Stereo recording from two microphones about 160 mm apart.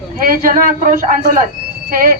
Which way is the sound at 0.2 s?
60° right (ahead or behind).